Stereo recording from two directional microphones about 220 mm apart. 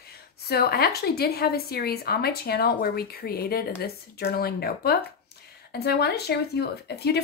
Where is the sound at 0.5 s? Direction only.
45° left (ahead or behind).